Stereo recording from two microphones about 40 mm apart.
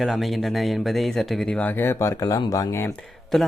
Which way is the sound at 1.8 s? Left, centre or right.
Left.